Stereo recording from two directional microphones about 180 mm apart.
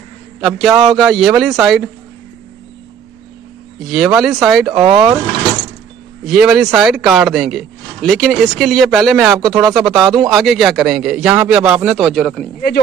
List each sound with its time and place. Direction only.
0.4 s a man's voice: centre (ahead or behind)
3.8 s a man's voice: centre (ahead or behind)
4.7 s speech: 25° right (ahead or behind)
6.2 s a man's voice: 5° right (ahead or behind)